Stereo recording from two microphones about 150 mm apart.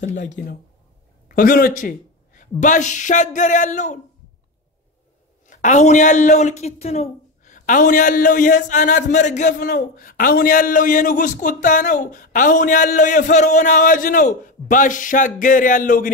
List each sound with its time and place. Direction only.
0.0 s speech: 55° left (ahead or behind)
1.3 s a sound: 70° left (ahead or behind)
2.6 s speech: 55° left (ahead or behind)
5.5 s speech: 55° left (ahead or behind)